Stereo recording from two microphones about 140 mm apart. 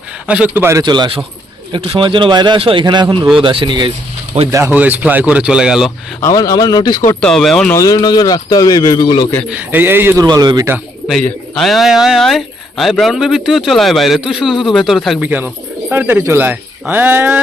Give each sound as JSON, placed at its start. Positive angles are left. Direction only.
{"t": 0.3, "sound": "a man's voice", "side_deg": -10}
{"t": 4.5, "sound": "a man's voice", "side_deg": -15}
{"t": 6.2, "sound": "speech", "side_deg": 25}
{"t": 7.2, "sound": "a man's voice", "side_deg": 5}
{"t": 7.7, "sound": "speech", "side_deg": 25}
{"t": 9.5, "sound": "speech", "side_deg": -15}
{"t": 10.2, "sound": "speech", "side_deg": -30}
{"t": 11.1, "sound": "a man's voice", "side_deg": 5}
{"t": 15.2, "sound": "speech", "side_deg": -10}